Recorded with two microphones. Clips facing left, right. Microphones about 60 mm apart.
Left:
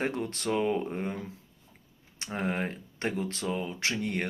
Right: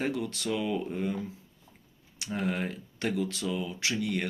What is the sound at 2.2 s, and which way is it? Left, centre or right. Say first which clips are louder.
Speech: even; left.